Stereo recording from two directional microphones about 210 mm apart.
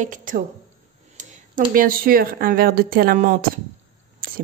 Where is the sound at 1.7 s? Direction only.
45° right (ahead or behind).